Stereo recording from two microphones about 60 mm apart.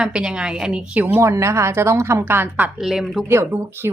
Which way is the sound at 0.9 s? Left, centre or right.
Right.